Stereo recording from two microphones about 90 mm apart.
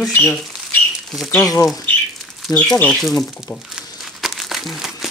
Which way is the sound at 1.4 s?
40° left (ahead or behind).